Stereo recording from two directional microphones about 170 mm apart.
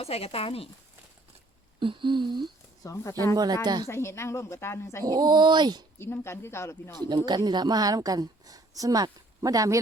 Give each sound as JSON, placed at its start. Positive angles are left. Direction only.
{"t": 0.0, "sound": "speech", "side_deg": 35}
{"t": 1.8, "sound": "a woman's voice", "side_deg": -30}
{"t": 2.8, "sound": "speech", "side_deg": 20}
{"t": 3.3, "sound": "a woman's voice", "side_deg": -25}
{"t": 3.8, "sound": "speech", "side_deg": 15}
{"t": 5.0, "sound": "a woman's voice", "side_deg": -25}
{"t": 6.0, "sound": "speech", "side_deg": 15}
{"t": 7.3, "sound": "a woman's voice", "side_deg": -25}